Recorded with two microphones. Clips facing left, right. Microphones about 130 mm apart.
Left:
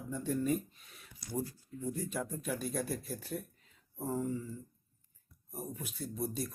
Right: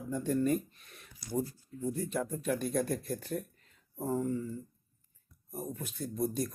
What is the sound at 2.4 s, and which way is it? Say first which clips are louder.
Speech: right 7 dB; centre (ahead or behind).